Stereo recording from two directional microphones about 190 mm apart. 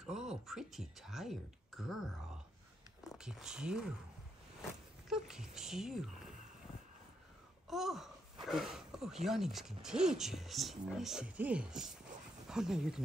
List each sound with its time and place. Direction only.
0.0 s speech: 5° right (ahead or behind)
5.1 s speech: 5° right (ahead or behind)
7.6 s speech: centre (ahead or behind)